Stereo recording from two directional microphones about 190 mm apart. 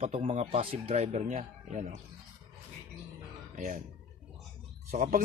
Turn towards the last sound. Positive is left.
turn(degrees=-45)  # may be behind; listen again after turning